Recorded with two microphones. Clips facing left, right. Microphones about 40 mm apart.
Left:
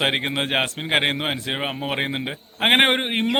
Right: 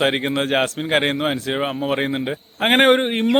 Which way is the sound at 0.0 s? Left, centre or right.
Centre.